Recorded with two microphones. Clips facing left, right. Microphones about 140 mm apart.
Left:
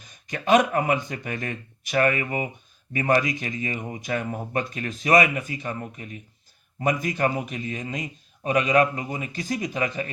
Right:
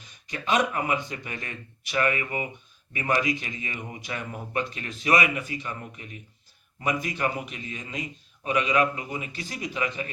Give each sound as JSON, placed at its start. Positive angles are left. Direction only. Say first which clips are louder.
{"t": 0.0, "sound": "speech", "louder": "left 4 dB", "side_deg": 45}